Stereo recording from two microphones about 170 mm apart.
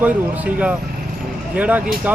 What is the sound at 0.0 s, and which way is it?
Speech, 10° right (ahead or behind).